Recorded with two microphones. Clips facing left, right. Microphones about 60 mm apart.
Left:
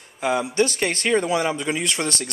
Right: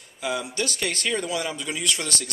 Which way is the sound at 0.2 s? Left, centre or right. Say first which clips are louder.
Left 7 dB; left.